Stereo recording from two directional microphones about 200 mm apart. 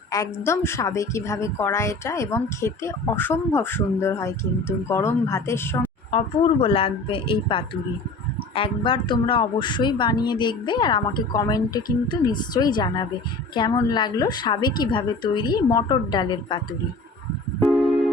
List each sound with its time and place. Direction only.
0.1 s a woman's voice: 15° left (ahead or behind)
6.1 s a woman's voice: 25° left (ahead or behind)